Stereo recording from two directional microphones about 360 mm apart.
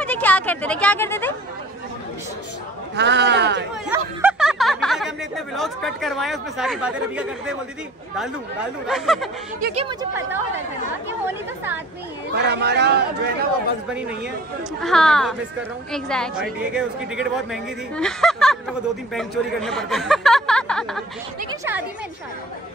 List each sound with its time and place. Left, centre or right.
0.0 s speech: centre
3.0 s a man's voice: right
3.8 s a woman's voice: centre
8.8 s a woman's voice: centre
9.6 s a man's voice: right
9.8 s a woman's voice: centre
12.4 s a man's voice: right
13.8 s a woman's voice: centre